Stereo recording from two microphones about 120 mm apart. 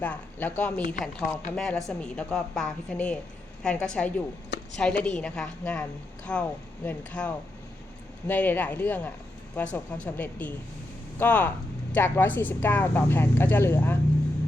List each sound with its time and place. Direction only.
0.0 s speech: 15° left (ahead or behind)